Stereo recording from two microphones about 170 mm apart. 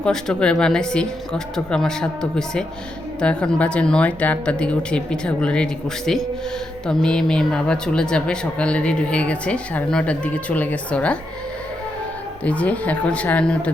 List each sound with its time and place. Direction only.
0.0 s speech: 5° left (ahead or behind)
6.8 s speech: 5° left (ahead or behind)
12.5 s speech: 10° left (ahead or behind)